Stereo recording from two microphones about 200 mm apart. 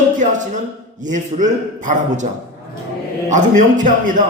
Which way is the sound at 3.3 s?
40° right (ahead or behind).